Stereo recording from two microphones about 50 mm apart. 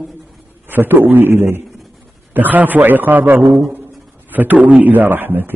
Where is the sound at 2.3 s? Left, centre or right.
Right.